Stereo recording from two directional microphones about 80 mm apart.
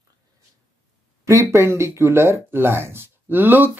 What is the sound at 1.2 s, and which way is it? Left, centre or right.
Speech, right.